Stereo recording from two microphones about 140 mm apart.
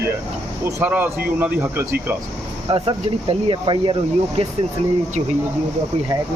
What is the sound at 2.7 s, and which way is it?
Speech, 40° right (ahead or behind).